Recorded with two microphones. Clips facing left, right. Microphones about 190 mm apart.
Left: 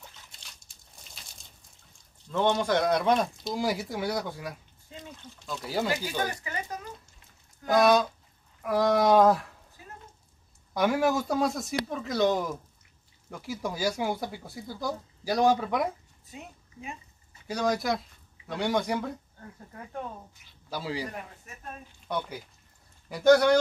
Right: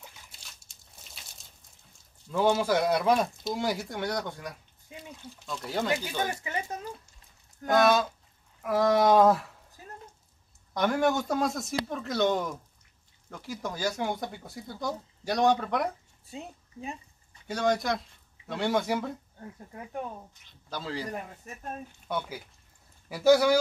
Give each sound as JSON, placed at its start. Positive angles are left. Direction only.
{"t": 0.7, "sound": "a sound", "side_deg": 0}
{"t": 2.2, "sound": "speech", "side_deg": -5}
{"t": 4.8, "sound": "a sound", "side_deg": -10}
{"t": 5.6, "sound": "speech", "side_deg": 0}
{"t": 6.1, "sound": "speech", "side_deg": -25}
{"t": 7.6, "sound": "speech", "side_deg": 0}
{"t": 9.8, "sound": "a sound", "side_deg": -40}
{"t": 10.7, "sound": "speech", "side_deg": 5}
{"t": 16.3, "sound": "a woman's voice", "side_deg": -30}
{"t": 17.3, "sound": "speech", "side_deg": 0}
{"t": 20.7, "sound": "a man's voice", "side_deg": 10}
{"t": 22.0, "sound": "speech", "side_deg": -5}